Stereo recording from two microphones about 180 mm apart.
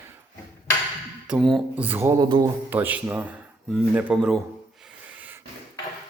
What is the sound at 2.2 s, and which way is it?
Speech, 25° right (ahead or behind).